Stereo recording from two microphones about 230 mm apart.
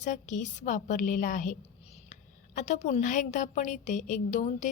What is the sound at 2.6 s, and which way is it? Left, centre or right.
A woman's voice, left.